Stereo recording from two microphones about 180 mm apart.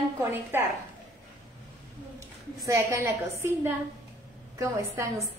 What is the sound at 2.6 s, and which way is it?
A woman's voice, 15° right (ahead or behind).